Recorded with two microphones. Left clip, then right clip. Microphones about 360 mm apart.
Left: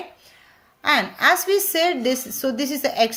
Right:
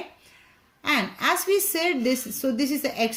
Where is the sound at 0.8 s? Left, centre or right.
Left.